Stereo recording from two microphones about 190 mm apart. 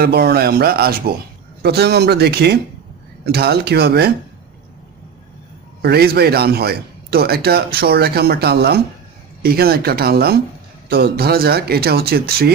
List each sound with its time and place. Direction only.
0.0 s speech: 55° right (ahead or behind)
5.8 s speech: 55° right (ahead or behind)